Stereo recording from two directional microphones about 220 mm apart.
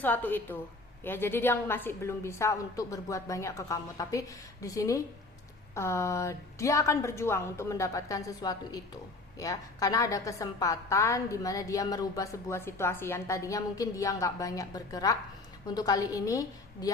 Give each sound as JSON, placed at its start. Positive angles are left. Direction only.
{"t": 0.0, "sound": "a woman's voice", "side_deg": 10}